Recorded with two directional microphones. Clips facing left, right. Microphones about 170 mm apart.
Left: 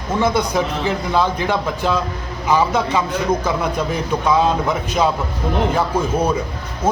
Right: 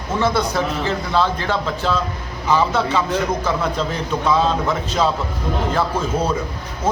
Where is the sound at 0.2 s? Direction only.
15° left (ahead or behind).